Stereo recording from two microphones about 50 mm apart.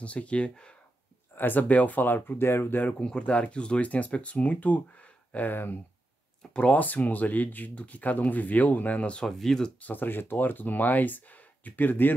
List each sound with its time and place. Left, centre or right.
0.0 s speech: left
1.3 s speech: left
2.8 s speech: left
5.5 s speech: left
6.5 s speech: left
9.2 s speech: centre
9.8 s speech: left